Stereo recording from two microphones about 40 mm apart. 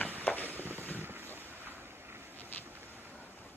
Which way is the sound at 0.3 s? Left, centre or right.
Left.